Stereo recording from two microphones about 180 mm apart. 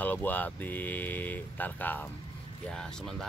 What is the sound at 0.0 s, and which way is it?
Speech, 10° left (ahead or behind).